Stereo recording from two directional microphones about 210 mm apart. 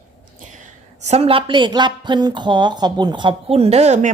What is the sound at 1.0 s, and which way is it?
A woman's voice, 30° right (ahead or behind).